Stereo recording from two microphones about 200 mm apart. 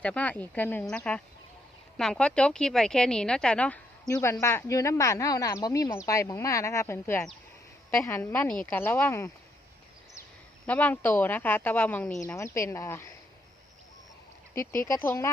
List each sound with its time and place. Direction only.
0.0 s speech: 5° left (ahead or behind)
10.7 s speech: 10° left (ahead or behind)
14.5 s speech: 15° left (ahead or behind)